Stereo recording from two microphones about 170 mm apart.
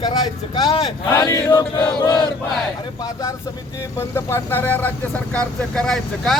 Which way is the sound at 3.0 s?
20° left (ahead or behind).